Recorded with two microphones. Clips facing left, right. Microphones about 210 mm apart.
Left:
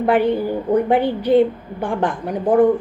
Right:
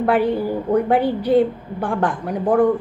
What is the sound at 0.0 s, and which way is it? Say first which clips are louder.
A woman's voice: left 1 dB; 20° left (ahead or behind).